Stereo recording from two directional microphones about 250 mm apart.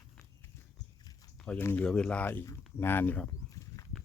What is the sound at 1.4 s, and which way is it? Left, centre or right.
Speech, centre.